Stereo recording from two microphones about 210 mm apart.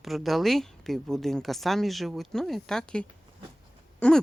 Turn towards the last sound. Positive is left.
turn(degrees=5)  # may be behind; listen again after turning